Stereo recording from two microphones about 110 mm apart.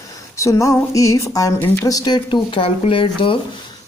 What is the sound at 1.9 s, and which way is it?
Speech, 35° left (ahead or behind).